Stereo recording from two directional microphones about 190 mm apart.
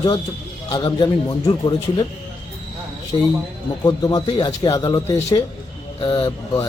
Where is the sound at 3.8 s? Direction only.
20° left (ahead or behind).